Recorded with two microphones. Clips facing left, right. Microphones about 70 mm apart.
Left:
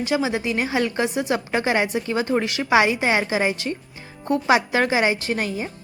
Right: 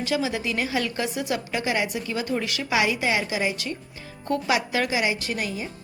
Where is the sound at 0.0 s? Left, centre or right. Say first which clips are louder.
Left 3 dB; left.